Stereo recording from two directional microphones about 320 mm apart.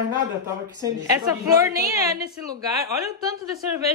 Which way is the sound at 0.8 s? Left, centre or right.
Centre.